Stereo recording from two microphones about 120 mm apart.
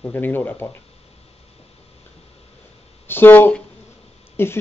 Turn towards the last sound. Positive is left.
turn(degrees=20)  # may be behind; listen again after turning